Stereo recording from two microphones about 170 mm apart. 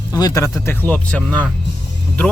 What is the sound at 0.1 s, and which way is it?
Speech, 20° left (ahead or behind).